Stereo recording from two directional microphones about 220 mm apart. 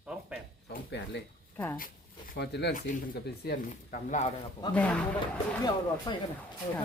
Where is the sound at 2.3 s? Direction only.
50° left (ahead or behind).